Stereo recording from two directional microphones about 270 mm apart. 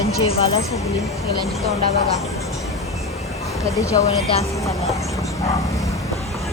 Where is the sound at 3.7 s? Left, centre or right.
Centre.